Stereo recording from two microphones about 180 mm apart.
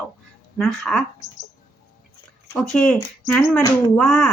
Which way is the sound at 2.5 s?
10° left (ahead or behind).